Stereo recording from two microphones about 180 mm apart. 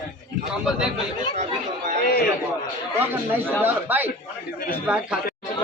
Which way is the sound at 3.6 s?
10° right (ahead or behind).